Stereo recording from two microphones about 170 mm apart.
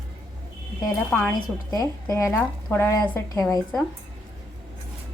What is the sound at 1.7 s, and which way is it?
A woman's voice, 20° left (ahead or behind).